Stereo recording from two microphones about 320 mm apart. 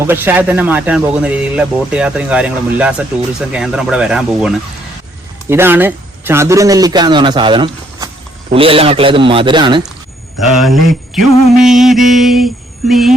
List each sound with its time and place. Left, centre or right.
0.0 s a man's voice: centre
10.4 s speech: centre